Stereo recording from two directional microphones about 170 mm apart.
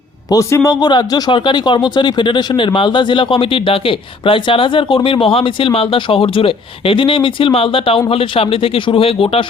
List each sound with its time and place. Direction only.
0.3 s a man's voice: 20° left (ahead or behind)